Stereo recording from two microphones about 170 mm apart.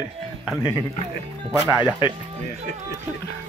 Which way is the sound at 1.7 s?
20° left (ahead or behind).